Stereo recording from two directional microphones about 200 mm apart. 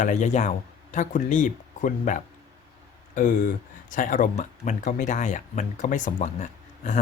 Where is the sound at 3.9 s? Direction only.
40° left (ahead or behind).